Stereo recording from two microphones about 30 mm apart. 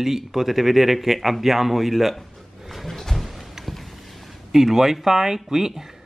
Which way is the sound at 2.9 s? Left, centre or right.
Centre.